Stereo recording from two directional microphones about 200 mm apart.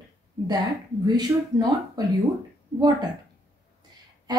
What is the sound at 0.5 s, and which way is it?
A woman's voice, 20° right (ahead or behind).